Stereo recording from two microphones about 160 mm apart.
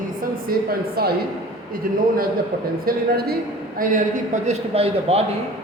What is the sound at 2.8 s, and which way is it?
A woman's voice, 70° right (ahead or behind).